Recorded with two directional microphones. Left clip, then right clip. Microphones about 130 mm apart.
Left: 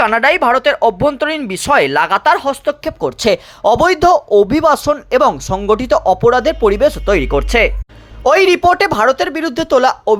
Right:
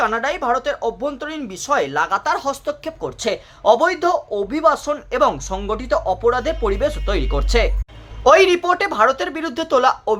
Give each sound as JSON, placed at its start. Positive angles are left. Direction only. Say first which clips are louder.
{"t": 0.0, "sound": "speech", "louder": "left 8 dB", "side_deg": 50}
{"t": 2.8, "sound": "speech", "louder": "left 9 dB", "side_deg": 45}